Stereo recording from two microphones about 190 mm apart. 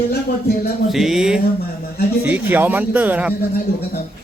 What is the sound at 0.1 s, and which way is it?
Speech, 55° left (ahead or behind).